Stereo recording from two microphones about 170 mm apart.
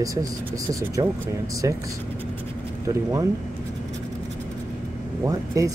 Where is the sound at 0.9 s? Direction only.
20° right (ahead or behind).